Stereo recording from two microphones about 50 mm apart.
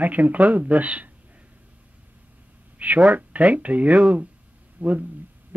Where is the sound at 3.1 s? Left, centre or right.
Right.